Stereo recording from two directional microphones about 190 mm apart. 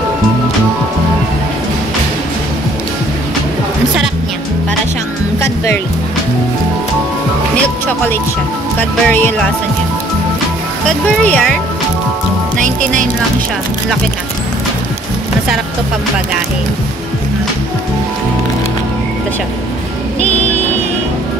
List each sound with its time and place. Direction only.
8.7 s speech: 10° left (ahead or behind)
10.9 s speech: 5° left (ahead or behind)
12.5 s speech: 45° right (ahead or behind)